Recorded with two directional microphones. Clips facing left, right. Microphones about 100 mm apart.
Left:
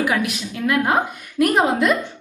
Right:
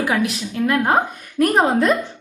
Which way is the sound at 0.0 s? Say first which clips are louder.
Right 1 dB; 30° right (ahead or behind).